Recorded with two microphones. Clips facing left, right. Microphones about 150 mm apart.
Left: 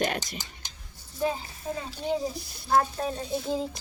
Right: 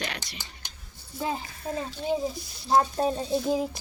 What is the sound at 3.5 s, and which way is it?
Speech, 10° right (ahead or behind).